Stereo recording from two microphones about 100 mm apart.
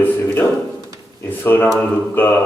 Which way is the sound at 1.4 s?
20° left (ahead or behind).